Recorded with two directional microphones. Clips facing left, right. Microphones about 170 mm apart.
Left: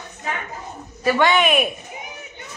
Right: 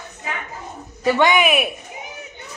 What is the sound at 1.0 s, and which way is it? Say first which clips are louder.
Speech: right 1 dB; 15° right (ahead or behind).